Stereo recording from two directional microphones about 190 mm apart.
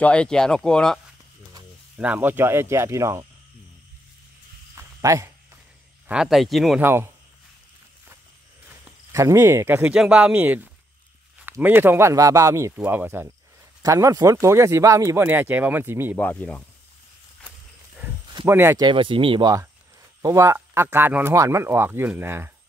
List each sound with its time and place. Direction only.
0.0 s speech: 5° left (ahead or behind)
2.0 s speech: 10° right (ahead or behind)
4.7 s a sound: 15° right (ahead or behind)
6.0 s speech: 5° right (ahead or behind)
6.8 s speech: 10° right (ahead or behind)
8.6 s speech: 15° right (ahead or behind)
16.2 s speech: 5° left (ahead or behind)
18.4 s speech: 15° right (ahead or behind)
18.9 s speech: 25° right (ahead or behind); by 22.5 s 10° right (ahead or behind)